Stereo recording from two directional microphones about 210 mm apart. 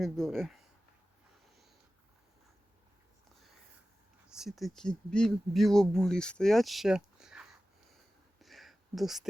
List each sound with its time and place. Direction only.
0.0 s speech: centre (ahead or behind)
4.3 s speech: centre (ahead or behind)
8.4 s a sound: centre (ahead or behind)